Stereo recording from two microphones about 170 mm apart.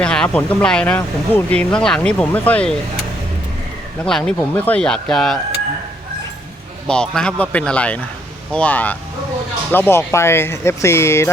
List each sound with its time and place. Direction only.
0.0 s speech: 5° left (ahead or behind)
4.0 s speech: 5° left (ahead or behind)
6.8 s speech: 5° left (ahead or behind)